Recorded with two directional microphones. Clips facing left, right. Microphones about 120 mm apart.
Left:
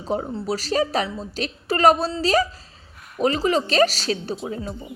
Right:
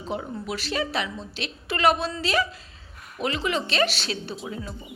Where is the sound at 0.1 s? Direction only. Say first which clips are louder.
Left 6 dB; 40° left (ahead or behind).